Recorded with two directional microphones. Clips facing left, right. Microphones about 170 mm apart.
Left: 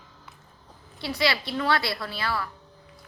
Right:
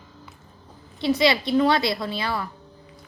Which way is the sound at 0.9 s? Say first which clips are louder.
Right 7 dB; 20° right (ahead or behind).